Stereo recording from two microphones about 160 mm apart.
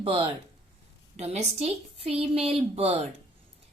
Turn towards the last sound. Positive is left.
turn(degrees=-40)  # may be behind; listen again after turning